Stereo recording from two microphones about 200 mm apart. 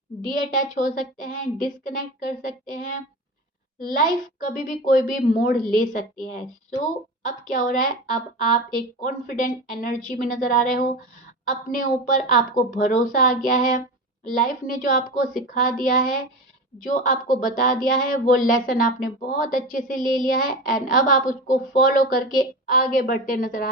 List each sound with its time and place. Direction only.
0.2 s a woman's voice: 40° left (ahead or behind)